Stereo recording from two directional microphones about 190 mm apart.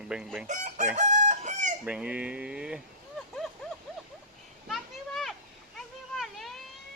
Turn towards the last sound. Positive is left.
turn(degrees=0)  # may be behind; listen again after turning